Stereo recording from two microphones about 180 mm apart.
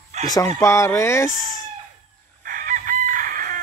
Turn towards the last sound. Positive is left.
turn(degrees=-50)  # may be behind; listen again after turning